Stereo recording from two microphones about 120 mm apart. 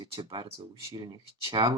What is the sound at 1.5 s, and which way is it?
Speech, 45° right (ahead or behind).